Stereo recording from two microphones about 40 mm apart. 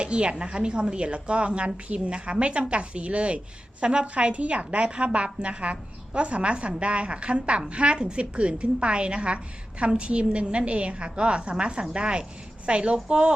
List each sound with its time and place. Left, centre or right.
0.0 s a woman's voice: right